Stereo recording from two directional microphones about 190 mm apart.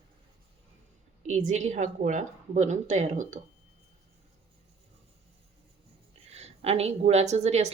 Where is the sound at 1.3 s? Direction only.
35° right (ahead or behind).